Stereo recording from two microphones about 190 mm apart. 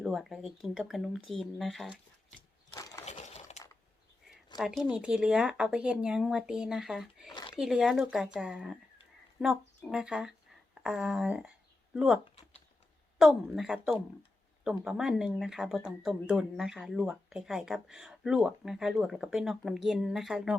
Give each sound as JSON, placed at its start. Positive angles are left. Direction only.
{"t": 0.0, "sound": "speech", "side_deg": 0}
{"t": 3.1, "sound": "a sound", "side_deg": 35}
{"t": 4.5, "sound": "speech", "side_deg": 0}